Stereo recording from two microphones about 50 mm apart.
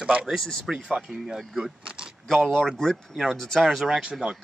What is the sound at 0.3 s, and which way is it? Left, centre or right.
Speech, centre.